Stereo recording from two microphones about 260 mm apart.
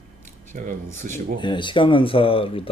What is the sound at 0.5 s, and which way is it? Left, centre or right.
Speech, right.